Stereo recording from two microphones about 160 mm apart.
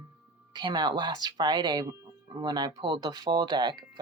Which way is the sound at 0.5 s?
25° right (ahead or behind).